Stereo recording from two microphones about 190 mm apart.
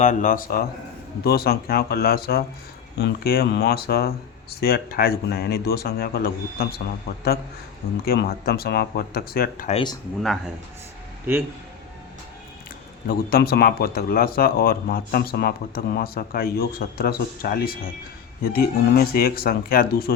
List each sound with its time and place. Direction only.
0.0 s speech: 40° left (ahead or behind); by 6.8 s 55° left (ahead or behind)
8.0 s speech: 55° left (ahead or behind)
9.6 s speech: 25° left (ahead or behind)
13.1 s speech: 55° left (ahead or behind)